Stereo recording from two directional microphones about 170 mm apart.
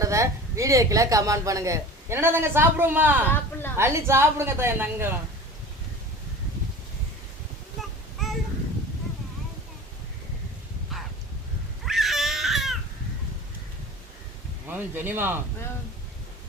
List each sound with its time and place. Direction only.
0.0 s a woman's voice: 20° right (ahead or behind)
3.2 s speech: 10° left (ahead or behind)
3.8 s a woman's voice: 15° right (ahead or behind)
7.8 s child singing: centre (ahead or behind)
11.9 s baby cry: centre (ahead or behind)
14.7 s a woman's voice: 10° right (ahead or behind)